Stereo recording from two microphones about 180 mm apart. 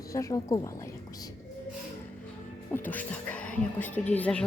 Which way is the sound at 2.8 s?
10° left (ahead or behind).